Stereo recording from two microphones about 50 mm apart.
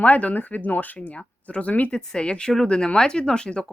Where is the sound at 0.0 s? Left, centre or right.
Left.